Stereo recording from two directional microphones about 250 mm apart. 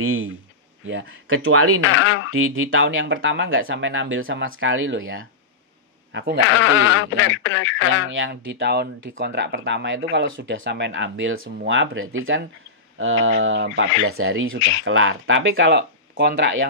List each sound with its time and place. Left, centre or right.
0.0 s speech: right
1.8 s speech: left
2.3 s speech: right
6.5 s speech: left
8.1 s speech: right